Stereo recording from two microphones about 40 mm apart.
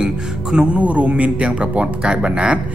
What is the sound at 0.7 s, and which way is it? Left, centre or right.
Speech, right.